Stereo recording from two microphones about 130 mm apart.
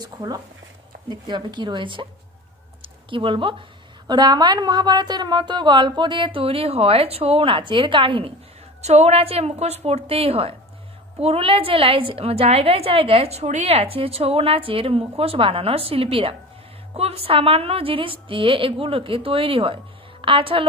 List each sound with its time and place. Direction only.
0.0 s a woman's voice: 30° right (ahead or behind)
8.8 s a woman's voice: 55° right (ahead or behind)